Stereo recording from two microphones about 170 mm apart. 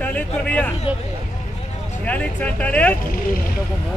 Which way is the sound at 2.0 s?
10° left (ahead or behind).